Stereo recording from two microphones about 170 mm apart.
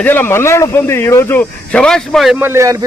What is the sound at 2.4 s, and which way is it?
Speech, 15° right (ahead or behind).